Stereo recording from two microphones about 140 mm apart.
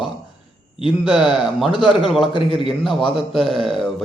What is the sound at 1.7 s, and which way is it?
Speech, 35° left (ahead or behind).